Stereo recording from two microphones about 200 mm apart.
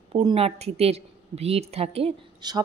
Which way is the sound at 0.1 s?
25° right (ahead or behind).